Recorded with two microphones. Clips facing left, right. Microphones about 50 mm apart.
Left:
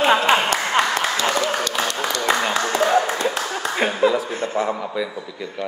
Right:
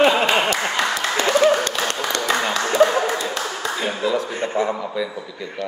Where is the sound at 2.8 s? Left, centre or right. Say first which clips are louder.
Right 4 dB; right.